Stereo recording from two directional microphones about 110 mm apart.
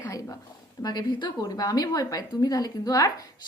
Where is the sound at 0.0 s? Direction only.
35° left (ahead or behind).